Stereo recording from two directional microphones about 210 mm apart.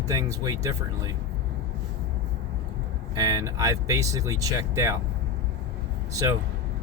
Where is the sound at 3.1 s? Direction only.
15° right (ahead or behind).